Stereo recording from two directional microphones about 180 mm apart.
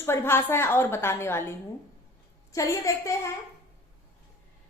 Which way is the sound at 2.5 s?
20° left (ahead or behind).